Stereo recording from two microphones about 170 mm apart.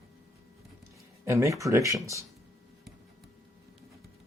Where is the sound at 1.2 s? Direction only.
15° right (ahead or behind).